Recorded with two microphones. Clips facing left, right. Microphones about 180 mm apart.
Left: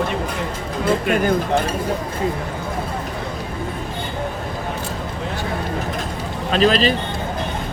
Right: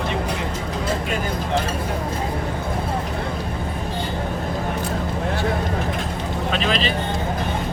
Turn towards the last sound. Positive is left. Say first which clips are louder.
# left 6 dB
turn(degrees=40)  # may be behind; listen again after turning